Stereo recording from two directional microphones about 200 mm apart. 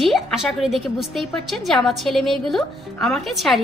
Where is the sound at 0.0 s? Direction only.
Centre (ahead or behind).